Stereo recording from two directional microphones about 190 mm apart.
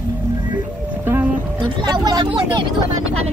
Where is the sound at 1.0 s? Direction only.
10° right (ahead or behind).